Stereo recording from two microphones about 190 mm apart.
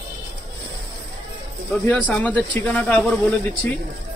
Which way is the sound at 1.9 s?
5° left (ahead or behind).